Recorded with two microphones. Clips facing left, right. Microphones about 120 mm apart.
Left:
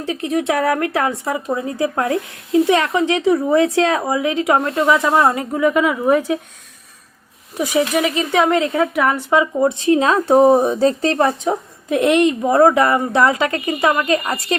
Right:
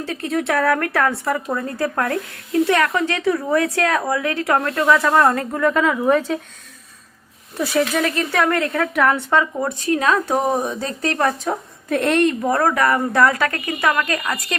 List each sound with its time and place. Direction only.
0.0 s speech: 15° left (ahead or behind)
7.5 s a woman's voice: 15° left (ahead or behind)
11.4 s a woman's voice: 15° left (ahead or behind)
14.2 s a woman's voice: 30° left (ahead or behind)